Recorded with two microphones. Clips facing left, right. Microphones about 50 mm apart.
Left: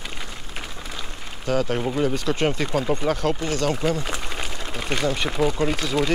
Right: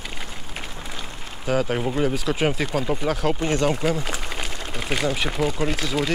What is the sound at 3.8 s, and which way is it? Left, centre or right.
Speech, centre.